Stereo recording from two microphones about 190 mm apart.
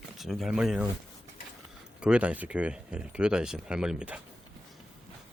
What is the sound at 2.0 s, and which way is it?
Speech, 5° right (ahead or behind).